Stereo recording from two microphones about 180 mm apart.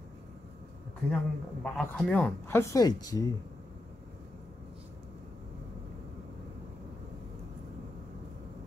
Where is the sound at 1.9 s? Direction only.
5° left (ahead or behind).